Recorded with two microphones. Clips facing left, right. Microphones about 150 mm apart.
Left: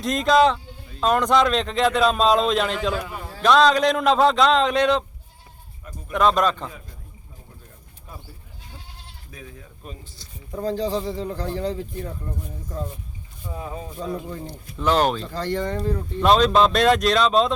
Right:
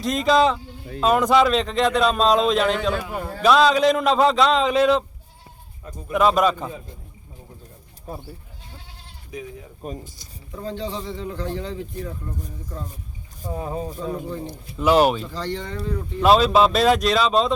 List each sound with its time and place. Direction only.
0.0 s speech: centre (ahead or behind)
2.9 s a man's voice: 55° right (ahead or behind)
3.4 s speech: 5° right (ahead or behind)
6.1 s speech: 5° right (ahead or behind)
8.1 s speech: 35° right (ahead or behind)
9.3 s speech: 20° right (ahead or behind)
9.8 s speech: 40° right (ahead or behind)
10.6 s speech: 40° left (ahead or behind)
13.4 s speech: 40° right (ahead or behind)
14.4 s speech: 10° right (ahead or behind)
15.3 s speech: 50° left (ahead or behind)
16.2 s speech: 5° right (ahead or behind)